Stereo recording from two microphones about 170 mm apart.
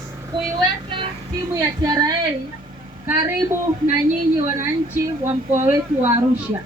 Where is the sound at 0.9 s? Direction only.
30° right (ahead or behind).